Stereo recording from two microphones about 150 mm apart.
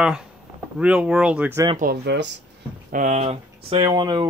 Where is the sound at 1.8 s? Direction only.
80° right.